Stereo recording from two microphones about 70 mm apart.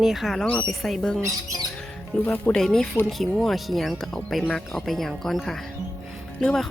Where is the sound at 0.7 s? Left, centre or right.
Centre.